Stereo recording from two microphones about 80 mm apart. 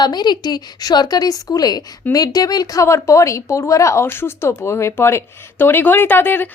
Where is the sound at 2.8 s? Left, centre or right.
Left.